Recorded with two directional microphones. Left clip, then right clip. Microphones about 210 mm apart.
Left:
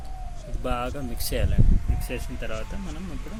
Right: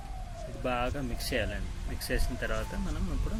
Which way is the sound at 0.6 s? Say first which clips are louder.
Left 2 dB; 15° left (ahead or behind).